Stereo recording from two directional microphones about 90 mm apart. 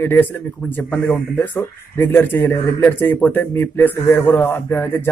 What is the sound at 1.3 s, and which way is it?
Speech, 25° left (ahead or behind).